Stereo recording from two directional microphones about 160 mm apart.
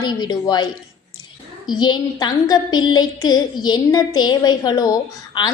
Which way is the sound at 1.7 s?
25° left (ahead or behind).